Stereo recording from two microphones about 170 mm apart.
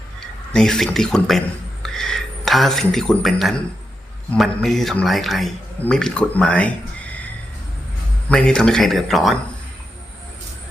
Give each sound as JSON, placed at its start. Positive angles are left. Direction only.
{"t": 0.5, "sound": "a man's voice", "side_deg": 0}
{"t": 8.3, "sound": "a man's voice", "side_deg": 5}